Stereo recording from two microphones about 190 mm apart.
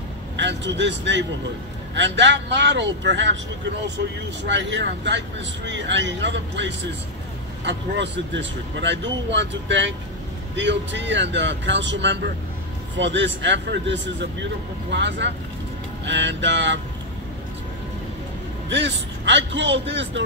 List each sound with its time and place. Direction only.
0.4 s speech: 70° right (ahead or behind)
4.5 s speech: 70° right (ahead or behind)
18.7 s speech: 70° right (ahead or behind)